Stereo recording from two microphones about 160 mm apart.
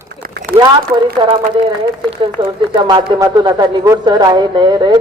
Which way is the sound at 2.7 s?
30° right (ahead or behind).